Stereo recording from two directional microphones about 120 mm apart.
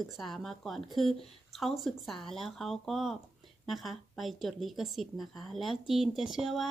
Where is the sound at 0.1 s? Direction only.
Centre (ahead or behind).